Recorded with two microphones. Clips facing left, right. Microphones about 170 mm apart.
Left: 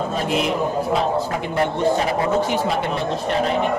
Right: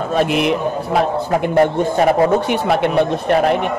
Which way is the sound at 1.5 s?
55° right (ahead or behind).